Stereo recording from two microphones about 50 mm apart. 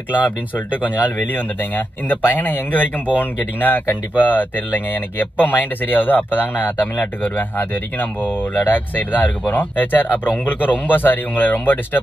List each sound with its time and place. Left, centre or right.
0.1 s speech: left